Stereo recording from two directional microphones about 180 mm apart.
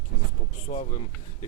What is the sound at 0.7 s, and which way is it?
Speech, 40° left (ahead or behind).